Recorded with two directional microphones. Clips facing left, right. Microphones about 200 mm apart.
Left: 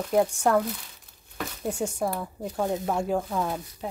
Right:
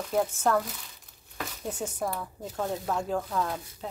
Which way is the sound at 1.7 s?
10° left (ahead or behind).